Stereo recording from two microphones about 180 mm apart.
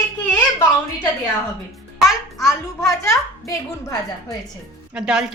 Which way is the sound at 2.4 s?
15° left (ahead or behind).